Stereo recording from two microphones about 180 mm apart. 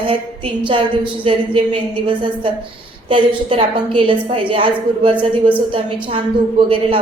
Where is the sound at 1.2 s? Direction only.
30° right (ahead or behind).